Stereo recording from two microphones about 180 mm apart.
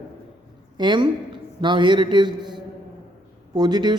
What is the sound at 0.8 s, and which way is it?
Speech, 25° right (ahead or behind).